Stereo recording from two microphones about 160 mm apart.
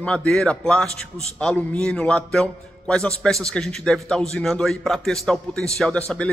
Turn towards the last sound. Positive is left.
turn(degrees=5)  # may be behind; listen again after turning